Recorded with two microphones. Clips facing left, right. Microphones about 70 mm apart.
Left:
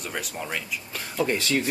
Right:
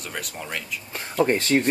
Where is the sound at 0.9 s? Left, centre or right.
Right.